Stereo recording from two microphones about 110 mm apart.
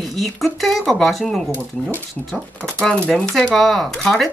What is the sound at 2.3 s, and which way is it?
Speech, 5° left (ahead or behind).